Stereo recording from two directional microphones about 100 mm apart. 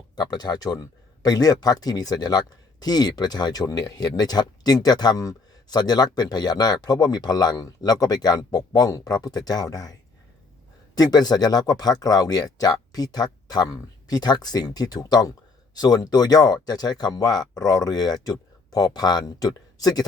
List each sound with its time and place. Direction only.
0.2 s speech: 45° left (ahead or behind)